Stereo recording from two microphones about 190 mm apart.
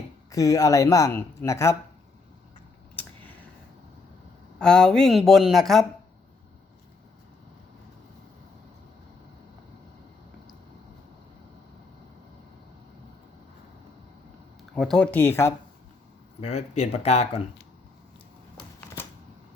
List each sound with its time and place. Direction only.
0.3 s speech: 15° left (ahead or behind)
3.0 s a sound: 10° left (ahead or behind)
4.6 s speech: 5° left (ahead or behind)
14.8 s speech: 5° left (ahead or behind)
16.4 s speech: 35° left (ahead or behind)